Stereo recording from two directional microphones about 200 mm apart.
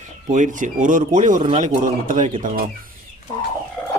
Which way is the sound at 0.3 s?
40° right (ahead or behind).